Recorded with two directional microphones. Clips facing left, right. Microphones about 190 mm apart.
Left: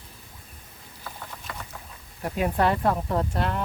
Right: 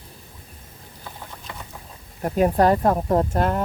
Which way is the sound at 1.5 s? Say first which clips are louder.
Even; 20° right (ahead or behind).